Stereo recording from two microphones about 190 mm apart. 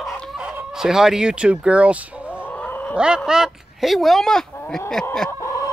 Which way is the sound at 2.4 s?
10° left (ahead or behind).